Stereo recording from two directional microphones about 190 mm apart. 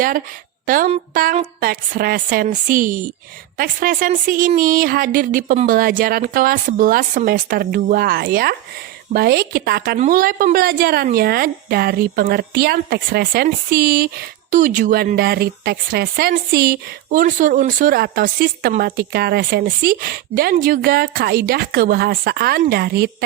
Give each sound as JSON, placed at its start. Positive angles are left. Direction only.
{"t": 1.1, "sound": "a woman's voice", "side_deg": -45}